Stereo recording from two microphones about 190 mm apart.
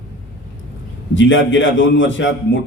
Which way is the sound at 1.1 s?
80° left.